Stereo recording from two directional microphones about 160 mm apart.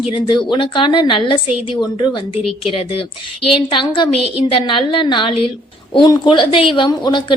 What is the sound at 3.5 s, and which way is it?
A woman's voice, 30° left (ahead or behind).